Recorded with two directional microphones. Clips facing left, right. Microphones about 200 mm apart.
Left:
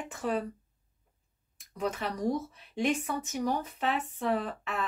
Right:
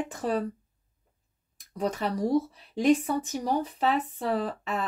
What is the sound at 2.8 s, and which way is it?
Speech, 35° right (ahead or behind).